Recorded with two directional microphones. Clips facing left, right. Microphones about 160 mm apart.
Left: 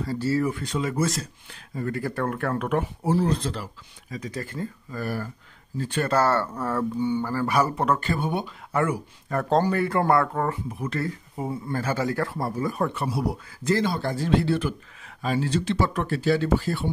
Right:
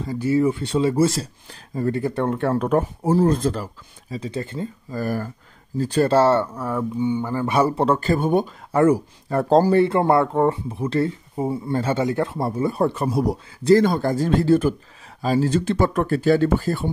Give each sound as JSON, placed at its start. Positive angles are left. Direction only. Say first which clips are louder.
{"t": 0.0, "sound": "speech", "louder": "right 5 dB", "side_deg": -15}
{"t": 2.0, "sound": "speech", "louder": "right 5 dB", "side_deg": -25}
{"t": 4.1, "sound": "speech", "louder": "right 5 dB", "side_deg": -25}
{"t": 4.9, "sound": "speech", "louder": "right 6 dB", "side_deg": -40}
{"t": 6.4, "sound": "speech", "louder": "right 1 dB", "side_deg": -10}